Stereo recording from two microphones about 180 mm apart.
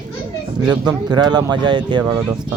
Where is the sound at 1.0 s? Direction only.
25° right (ahead or behind).